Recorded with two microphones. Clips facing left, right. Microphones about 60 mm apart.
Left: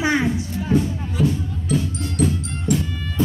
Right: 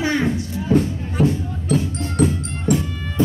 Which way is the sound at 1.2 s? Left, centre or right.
Right.